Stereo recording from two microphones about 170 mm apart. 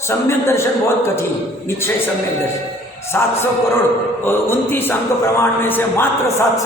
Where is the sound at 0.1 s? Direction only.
15° left (ahead or behind).